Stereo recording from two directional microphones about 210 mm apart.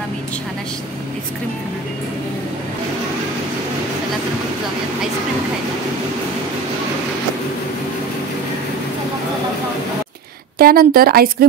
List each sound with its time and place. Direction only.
10.6 s speech: 45° right (ahead or behind)